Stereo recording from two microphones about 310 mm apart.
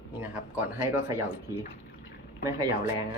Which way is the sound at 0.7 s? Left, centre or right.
Centre.